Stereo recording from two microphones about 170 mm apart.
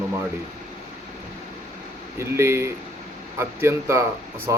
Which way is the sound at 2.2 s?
15° right (ahead or behind).